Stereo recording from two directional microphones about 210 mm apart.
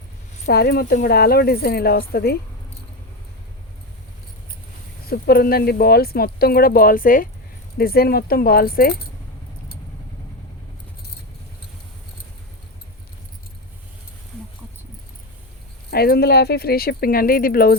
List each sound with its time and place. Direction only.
0.4 s speech: 50° left (ahead or behind)
5.0 s speech: 45° left (ahead or behind)
15.9 s speech: 50° left (ahead or behind)